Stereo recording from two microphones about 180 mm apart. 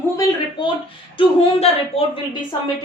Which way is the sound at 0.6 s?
25° left (ahead or behind).